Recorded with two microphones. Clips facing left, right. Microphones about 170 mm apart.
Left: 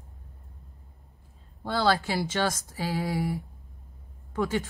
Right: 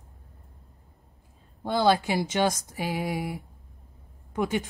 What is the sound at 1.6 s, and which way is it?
Speech, 15° right (ahead or behind).